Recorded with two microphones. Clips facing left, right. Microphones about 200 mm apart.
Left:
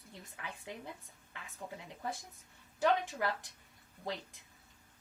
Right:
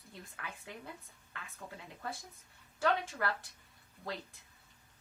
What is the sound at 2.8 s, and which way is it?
Speech, 15° left (ahead or behind).